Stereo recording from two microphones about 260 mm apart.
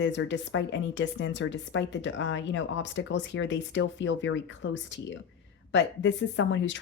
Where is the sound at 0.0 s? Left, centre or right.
Left.